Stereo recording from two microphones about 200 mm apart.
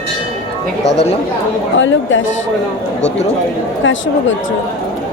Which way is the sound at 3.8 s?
70° left (ahead or behind).